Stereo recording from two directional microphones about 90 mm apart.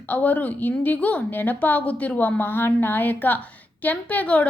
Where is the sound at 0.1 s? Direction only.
20° left (ahead or behind).